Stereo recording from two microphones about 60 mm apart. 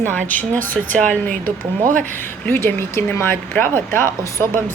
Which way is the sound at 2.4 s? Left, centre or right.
Left.